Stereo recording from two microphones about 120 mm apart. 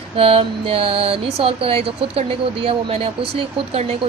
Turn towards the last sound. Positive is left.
turn(degrees=-60)  # may be behind; listen again after turning